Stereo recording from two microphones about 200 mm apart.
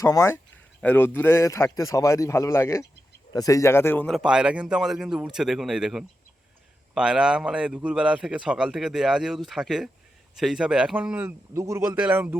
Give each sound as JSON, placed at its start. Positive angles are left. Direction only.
{"t": 0.0, "sound": "a man's voice", "side_deg": 15}